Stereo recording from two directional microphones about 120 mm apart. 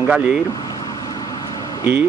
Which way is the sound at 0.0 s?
10° right (ahead or behind).